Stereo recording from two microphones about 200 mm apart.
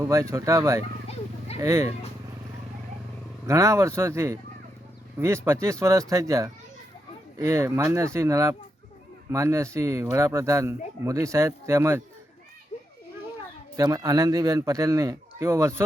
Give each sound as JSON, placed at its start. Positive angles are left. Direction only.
{"t": 0.0, "sound": "speech", "side_deg": -15}
{"t": 3.4, "sound": "speech", "side_deg": -15}
{"t": 13.7, "sound": "speech", "side_deg": -15}